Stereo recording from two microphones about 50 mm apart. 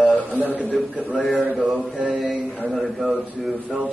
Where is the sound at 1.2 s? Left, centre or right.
Centre.